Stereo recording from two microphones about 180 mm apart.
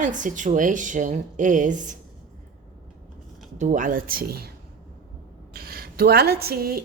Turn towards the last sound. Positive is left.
turn(degrees=-55)  # may be behind; listen again after turning